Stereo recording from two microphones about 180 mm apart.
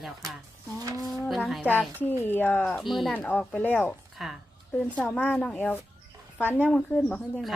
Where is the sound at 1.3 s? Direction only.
Centre (ahead or behind).